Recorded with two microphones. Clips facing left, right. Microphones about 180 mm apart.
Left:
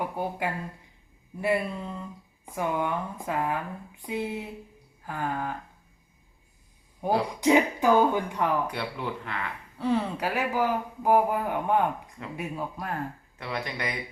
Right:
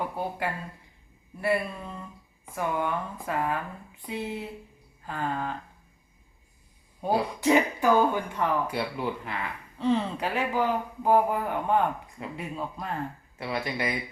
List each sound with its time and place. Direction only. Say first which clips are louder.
0.0 s speech: left 1 dB; 10° left (ahead or behind)
7.0 s speech: left 1 dB; 15° left (ahead or behind)
8.7 s speech: right 3 dB; 10° right (ahead or behind)
9.7 s speech: right 1 dB; 10° left (ahead or behind)
13.4 s speech: right 2 dB; 5° right (ahead or behind)